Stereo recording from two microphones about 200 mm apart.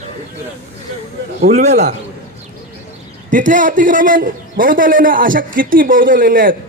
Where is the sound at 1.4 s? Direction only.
35° right (ahead or behind).